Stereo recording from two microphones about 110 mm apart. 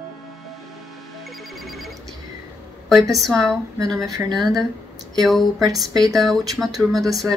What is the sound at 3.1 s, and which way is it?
Speech, centre (ahead or behind).